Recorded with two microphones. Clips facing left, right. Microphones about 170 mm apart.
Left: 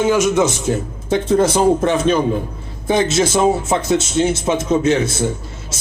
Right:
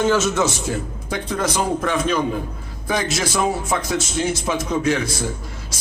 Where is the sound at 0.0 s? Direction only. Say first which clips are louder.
Left 4 dB; 15° left (ahead or behind).